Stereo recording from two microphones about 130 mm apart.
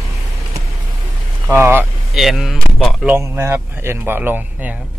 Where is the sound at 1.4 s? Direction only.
15° right (ahead or behind).